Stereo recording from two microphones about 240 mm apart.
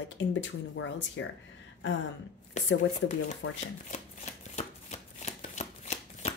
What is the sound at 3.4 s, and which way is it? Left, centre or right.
Speech, left.